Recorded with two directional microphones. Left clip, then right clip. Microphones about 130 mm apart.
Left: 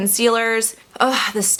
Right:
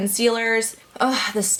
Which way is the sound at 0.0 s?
30° left (ahead or behind).